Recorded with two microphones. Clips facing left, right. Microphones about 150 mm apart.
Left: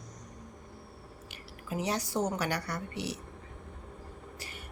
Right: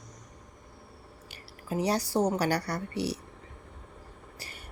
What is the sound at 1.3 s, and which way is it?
A woman's voice, 35° right (ahead or behind).